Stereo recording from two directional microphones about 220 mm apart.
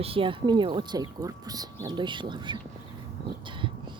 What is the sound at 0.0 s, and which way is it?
A woman's voice, 25° right (ahead or behind).